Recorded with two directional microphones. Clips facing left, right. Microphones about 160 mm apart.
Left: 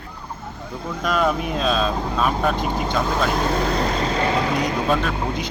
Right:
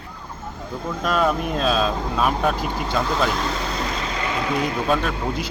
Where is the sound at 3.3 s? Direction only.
50° left (ahead or behind).